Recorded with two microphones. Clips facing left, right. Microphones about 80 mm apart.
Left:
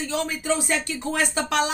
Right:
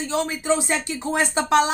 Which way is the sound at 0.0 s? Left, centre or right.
Right.